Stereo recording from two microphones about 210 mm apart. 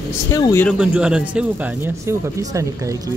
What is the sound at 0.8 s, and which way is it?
Speech, 5° right (ahead or behind).